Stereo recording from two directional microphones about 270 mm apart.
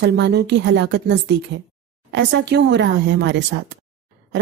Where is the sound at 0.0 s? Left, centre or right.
Right.